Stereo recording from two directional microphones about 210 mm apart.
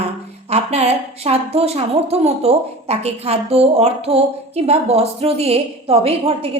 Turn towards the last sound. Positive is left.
turn(degrees=-25)  # may be behind; listen again after turning